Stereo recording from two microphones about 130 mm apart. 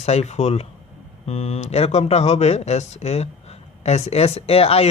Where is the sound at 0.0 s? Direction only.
55° left (ahead or behind).